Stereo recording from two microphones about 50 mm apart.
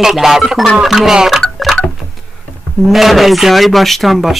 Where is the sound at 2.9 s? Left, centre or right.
Centre.